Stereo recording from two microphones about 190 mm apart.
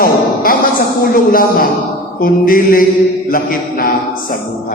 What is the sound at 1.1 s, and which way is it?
A man's voice, 50° left (ahead or behind).